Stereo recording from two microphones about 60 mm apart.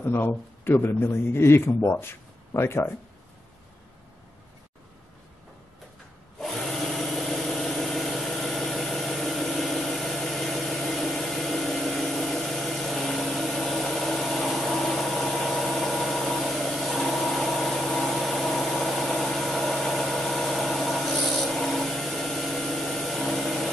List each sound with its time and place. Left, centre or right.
0.0 s a man's voice: left
6.4 s wood: centre